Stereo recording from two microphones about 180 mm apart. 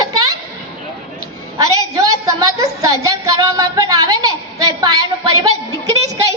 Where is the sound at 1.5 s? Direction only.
20° right (ahead or behind).